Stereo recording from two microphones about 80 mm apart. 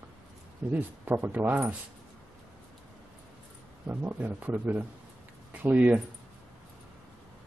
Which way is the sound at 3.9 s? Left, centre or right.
Right.